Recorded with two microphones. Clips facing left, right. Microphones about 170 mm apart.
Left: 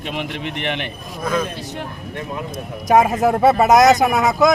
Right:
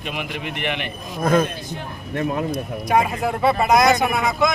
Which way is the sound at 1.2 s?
45° right (ahead or behind).